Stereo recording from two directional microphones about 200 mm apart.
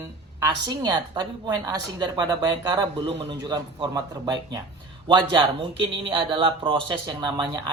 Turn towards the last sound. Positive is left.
turn(degrees=-20)  # may be behind; listen again after turning